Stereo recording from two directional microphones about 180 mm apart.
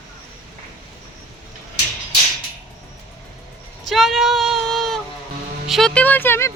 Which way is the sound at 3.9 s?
Centre (ahead or behind).